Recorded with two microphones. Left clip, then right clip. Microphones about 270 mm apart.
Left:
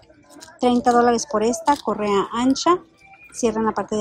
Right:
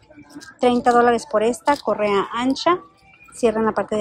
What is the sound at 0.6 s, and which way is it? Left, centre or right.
A woman's voice, centre.